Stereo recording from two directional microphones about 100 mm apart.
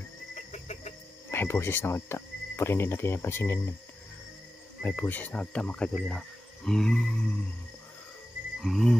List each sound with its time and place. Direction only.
1.3 s speech: 20° left (ahead or behind)
4.8 s speech: 20° left (ahead or behind)
8.5 s cricket: centre (ahead or behind)